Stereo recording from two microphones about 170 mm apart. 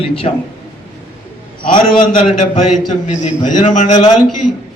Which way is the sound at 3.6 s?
35° left (ahead or behind).